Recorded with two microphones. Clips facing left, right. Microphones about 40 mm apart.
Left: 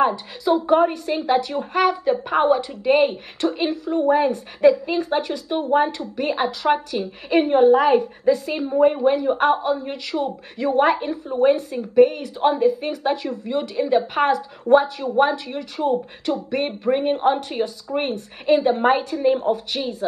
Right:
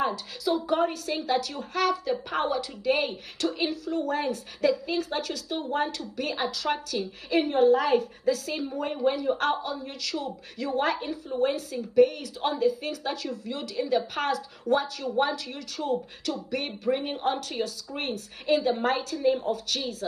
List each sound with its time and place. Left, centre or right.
0.0 s a woman's voice: left